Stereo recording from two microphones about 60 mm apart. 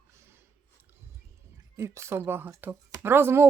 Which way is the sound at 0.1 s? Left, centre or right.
Right.